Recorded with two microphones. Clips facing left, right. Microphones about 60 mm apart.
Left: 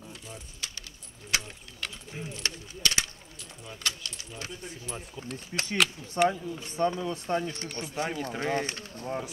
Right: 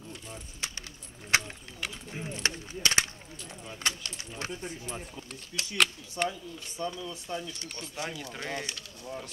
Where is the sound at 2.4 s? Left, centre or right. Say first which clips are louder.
Right 1 dB; right.